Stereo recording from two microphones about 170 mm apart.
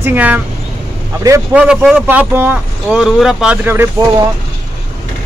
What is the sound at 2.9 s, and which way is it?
Speech, centre (ahead or behind).